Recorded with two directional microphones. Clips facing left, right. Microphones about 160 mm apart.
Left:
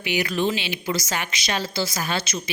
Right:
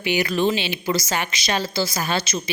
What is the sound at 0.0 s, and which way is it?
A woman's voice, 30° right (ahead or behind).